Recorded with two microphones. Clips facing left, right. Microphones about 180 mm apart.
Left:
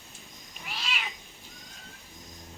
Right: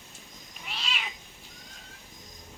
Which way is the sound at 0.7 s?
Centre (ahead or behind).